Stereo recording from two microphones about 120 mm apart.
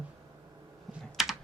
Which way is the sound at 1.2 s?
5° right (ahead or behind).